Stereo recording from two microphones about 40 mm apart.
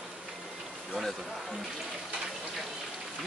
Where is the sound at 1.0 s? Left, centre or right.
Centre.